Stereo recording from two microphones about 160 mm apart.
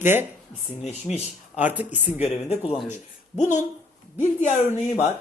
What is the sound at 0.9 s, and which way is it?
Speech, 45° left (ahead or behind).